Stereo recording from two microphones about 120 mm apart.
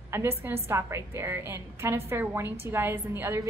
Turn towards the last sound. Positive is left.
turn(degrees=-20)  # may be behind; listen again after turning